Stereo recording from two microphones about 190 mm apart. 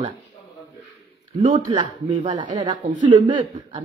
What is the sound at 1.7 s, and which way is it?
A woman's voice, 30° right (ahead or behind).